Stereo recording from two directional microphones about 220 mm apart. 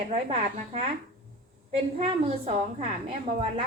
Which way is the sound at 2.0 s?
30° right (ahead or behind).